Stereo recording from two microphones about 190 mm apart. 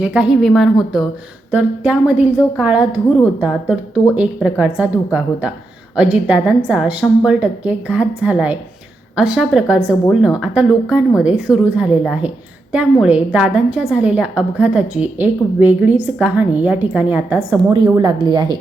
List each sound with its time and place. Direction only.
0.0 s a woman's voice: 5° right (ahead or behind)
4.1 s a woman's voice: 5° right (ahead or behind); by 18.5 s 25° right (ahead or behind)